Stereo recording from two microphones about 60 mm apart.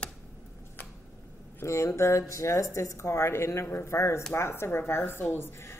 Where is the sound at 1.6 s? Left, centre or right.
Left.